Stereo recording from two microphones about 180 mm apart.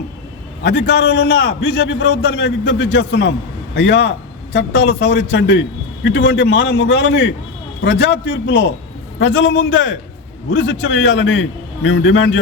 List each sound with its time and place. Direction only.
0.6 s a man's voice: 65° left (ahead or behind)
9.1 s a man's voice: 90° left